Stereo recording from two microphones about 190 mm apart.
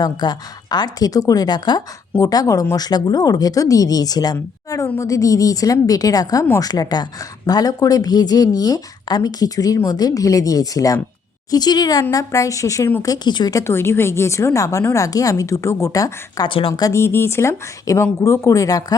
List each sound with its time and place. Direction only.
0.0 s speech: 20° left (ahead or behind)